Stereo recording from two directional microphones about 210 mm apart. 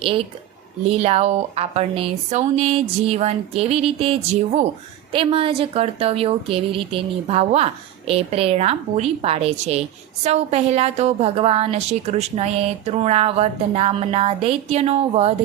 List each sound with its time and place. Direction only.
0.9 s a woman's voice: 30° right (ahead or behind)